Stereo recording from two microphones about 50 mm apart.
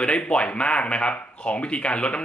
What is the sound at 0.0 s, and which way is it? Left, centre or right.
Speech, left.